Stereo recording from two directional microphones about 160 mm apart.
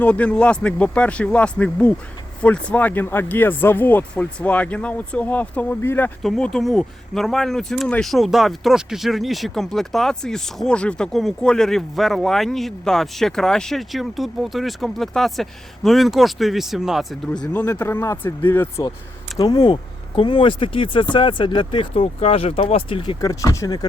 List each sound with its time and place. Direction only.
0.0 s speech: 10° left (ahead or behind)
6.2 s speech: centre (ahead or behind); by 23.8 s 25° left (ahead or behind)